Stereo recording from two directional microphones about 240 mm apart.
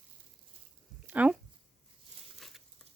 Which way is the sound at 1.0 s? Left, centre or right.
Centre.